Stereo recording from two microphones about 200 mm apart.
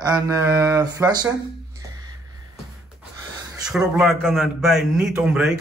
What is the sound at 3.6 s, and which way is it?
A man's voice, centre (ahead or behind).